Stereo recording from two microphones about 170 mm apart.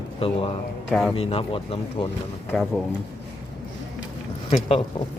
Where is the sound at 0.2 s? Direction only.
35° left (ahead or behind).